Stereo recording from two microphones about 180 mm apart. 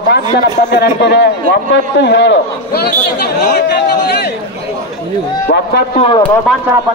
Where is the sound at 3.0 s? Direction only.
60° left (ahead or behind).